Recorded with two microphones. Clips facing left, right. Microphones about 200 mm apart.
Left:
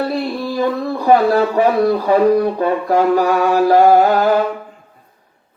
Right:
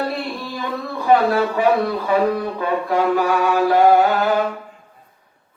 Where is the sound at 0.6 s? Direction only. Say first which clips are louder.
Left 8 dB; 40° left (ahead or behind).